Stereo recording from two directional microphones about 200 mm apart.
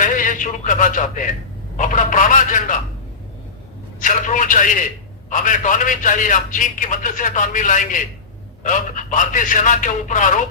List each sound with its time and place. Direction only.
0.0 s a man's voice: 40° left (ahead or behind)
4.0 s a man's voice: 40° left (ahead or behind)